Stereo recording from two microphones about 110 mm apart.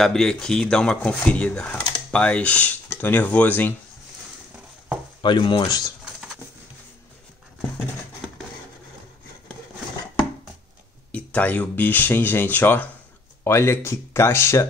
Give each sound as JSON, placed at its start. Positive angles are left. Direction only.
{"t": 0.0, "sound": "speech", "side_deg": 5}
{"t": 5.2, "sound": "speech", "side_deg": 45}
{"t": 5.7, "sound": "speech", "side_deg": 35}
{"t": 11.1, "sound": "speech", "side_deg": 15}